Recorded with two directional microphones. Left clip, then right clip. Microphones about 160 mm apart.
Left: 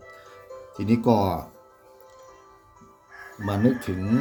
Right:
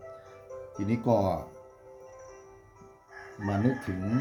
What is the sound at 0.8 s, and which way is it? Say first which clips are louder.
Speech: left 5 dB; 50° left (ahead or behind).